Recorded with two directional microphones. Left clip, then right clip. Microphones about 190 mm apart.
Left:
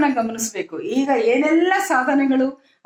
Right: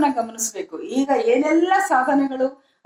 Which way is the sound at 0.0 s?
15° left (ahead or behind).